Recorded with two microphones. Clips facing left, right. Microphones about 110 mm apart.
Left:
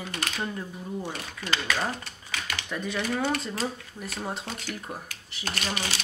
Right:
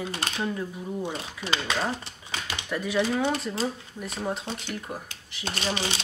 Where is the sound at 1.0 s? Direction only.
20° right (ahead or behind).